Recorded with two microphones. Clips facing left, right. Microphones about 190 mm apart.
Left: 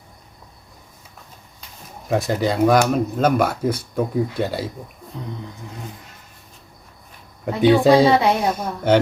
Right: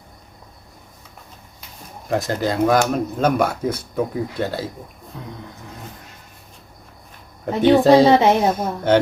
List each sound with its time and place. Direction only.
2.0 s speech: centre (ahead or behind)
7.4 s speech: 5° left (ahead or behind)
7.9 s speech: 20° right (ahead or behind)